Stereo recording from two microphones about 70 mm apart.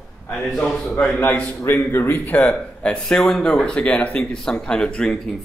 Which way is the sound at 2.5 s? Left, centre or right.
Centre.